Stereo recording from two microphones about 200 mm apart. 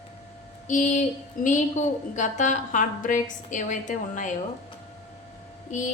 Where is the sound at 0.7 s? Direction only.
40° left (ahead or behind).